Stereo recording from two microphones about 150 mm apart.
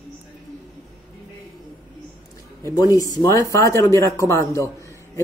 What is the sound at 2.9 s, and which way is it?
Speech, 20° left (ahead or behind).